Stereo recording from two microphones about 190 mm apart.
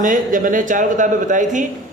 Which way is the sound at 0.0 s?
45° right (ahead or behind).